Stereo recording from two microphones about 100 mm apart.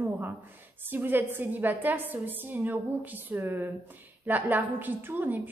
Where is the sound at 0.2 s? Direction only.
20° right (ahead or behind).